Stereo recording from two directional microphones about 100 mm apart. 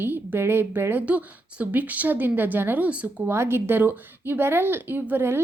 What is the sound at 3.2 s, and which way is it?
A woman's voice, 25° right (ahead or behind).